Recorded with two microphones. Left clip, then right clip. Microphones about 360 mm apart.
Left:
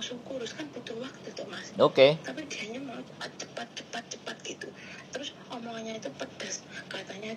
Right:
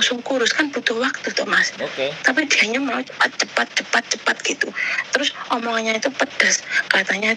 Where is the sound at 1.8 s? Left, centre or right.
Left.